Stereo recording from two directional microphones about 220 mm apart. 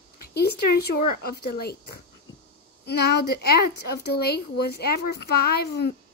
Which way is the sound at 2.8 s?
45° left (ahead or behind).